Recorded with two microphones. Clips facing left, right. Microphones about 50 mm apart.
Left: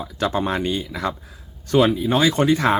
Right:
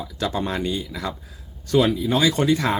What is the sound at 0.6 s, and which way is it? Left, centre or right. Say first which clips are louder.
Speech: left 3 dB; left.